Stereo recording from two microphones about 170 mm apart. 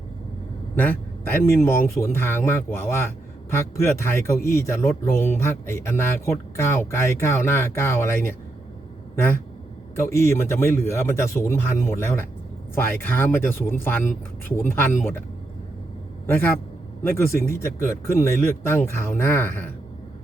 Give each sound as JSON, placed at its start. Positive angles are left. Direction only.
{"t": 0.8, "sound": "speech", "side_deg": 10}
{"t": 9.9, "sound": "speech", "side_deg": 15}
{"t": 16.2, "sound": "a man's voice", "side_deg": 10}